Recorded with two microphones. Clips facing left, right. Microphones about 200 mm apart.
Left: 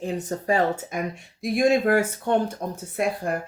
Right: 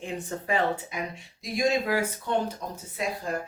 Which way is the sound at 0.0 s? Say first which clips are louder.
Left 6 dB; 40° left (ahead or behind).